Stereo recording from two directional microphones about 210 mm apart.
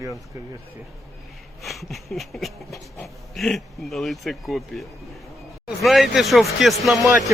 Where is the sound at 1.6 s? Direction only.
Centre (ahead or behind).